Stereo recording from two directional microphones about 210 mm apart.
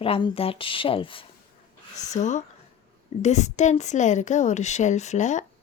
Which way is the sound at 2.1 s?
35° left (ahead or behind).